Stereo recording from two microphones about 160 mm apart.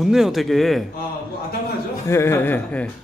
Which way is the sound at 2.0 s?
15° left (ahead or behind).